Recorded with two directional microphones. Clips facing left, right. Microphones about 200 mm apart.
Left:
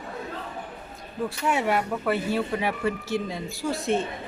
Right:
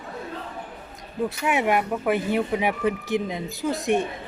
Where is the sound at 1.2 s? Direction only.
15° right (ahead or behind).